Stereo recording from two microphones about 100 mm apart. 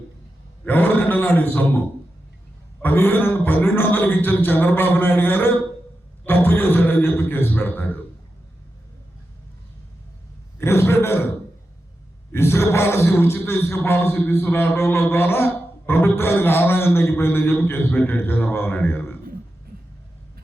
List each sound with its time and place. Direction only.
0.6 s a man's voice: 20° left (ahead or behind)
2.8 s a man's voice: 20° left (ahead or behind)
10.6 s a sound: 25° left (ahead or behind)
12.3 s a man's voice: 25° left (ahead or behind)